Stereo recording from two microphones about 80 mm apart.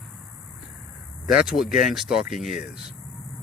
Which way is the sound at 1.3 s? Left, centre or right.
Centre.